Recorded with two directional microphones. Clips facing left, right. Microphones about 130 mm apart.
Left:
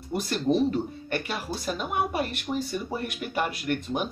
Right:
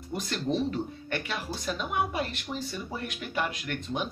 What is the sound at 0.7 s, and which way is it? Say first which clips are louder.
A woman's voice: left 4 dB; 45° left (ahead or behind).